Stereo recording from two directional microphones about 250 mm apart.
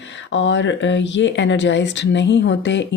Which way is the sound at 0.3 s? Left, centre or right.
Left.